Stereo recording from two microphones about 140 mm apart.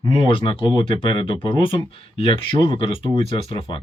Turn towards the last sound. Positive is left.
turn(degrees=40)  # may be behind; listen again after turning